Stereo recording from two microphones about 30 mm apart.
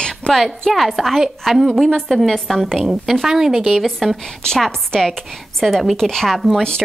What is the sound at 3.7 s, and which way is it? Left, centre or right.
Speech, centre.